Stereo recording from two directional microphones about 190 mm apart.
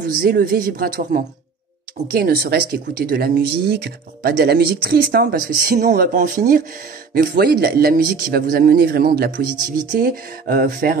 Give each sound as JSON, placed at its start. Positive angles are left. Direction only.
{"t": 0.0, "sound": "speech", "side_deg": -50}